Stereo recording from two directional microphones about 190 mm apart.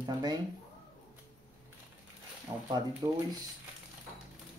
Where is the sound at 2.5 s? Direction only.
25° right (ahead or behind).